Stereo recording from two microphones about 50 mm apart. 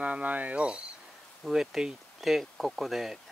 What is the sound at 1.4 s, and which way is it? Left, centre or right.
Speech, centre.